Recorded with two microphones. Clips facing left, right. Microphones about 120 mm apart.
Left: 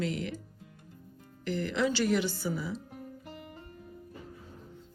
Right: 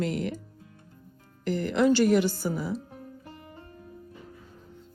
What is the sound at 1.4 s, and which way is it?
A woman's voice, 45° right (ahead or behind).